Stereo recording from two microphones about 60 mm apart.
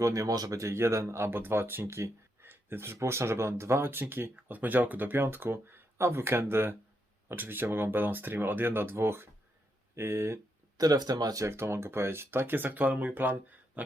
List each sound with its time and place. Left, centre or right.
0.0 s speech: right
1.3 s speech: right
10.8 s speech: right
11.4 s speech: right
13.8 s a sound: right